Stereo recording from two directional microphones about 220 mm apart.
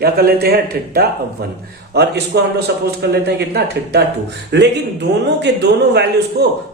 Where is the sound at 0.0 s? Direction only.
45° right (ahead or behind).